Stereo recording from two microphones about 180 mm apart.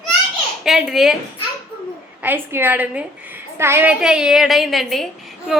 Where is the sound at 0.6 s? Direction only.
Centre (ahead or behind).